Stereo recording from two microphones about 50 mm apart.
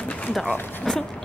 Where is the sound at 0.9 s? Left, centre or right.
Centre.